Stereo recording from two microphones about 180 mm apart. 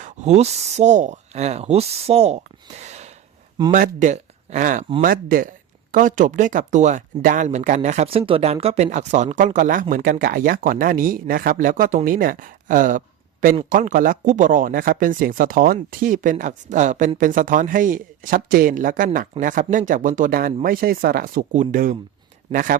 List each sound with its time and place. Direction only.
0.0 s speech: 35° right (ahead or behind)